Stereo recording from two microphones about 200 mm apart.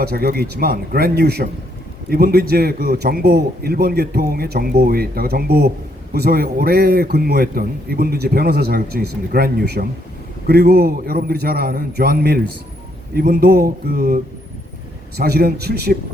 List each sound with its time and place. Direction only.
0.0 s a man's voice: 50° right (ahead or behind)